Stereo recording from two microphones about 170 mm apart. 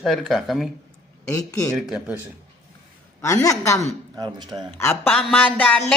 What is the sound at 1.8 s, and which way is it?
Speech, 5° right (ahead or behind).